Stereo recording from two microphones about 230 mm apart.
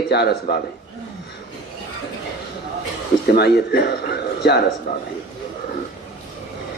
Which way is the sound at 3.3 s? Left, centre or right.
Left.